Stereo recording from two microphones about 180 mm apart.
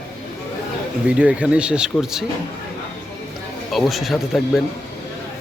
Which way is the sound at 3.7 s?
Centre (ahead or behind).